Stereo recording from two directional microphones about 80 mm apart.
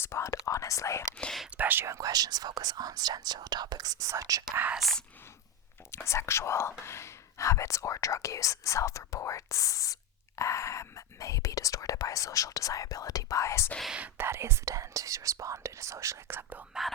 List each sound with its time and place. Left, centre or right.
0.0 s speech: left
0.4 s whispering: left
1.5 s whispering: right
1.9 s speech: right
4.8 s speech: centre
6.1 s speech: left
14.2 s speech: right
16.3 s speech: right